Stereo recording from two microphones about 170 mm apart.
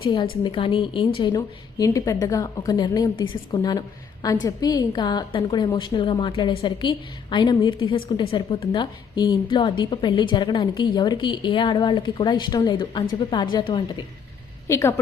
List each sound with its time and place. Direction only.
0.1 s a woman's voice: 30° left (ahead or behind)
14.7 s a woman's voice: 15° left (ahead or behind)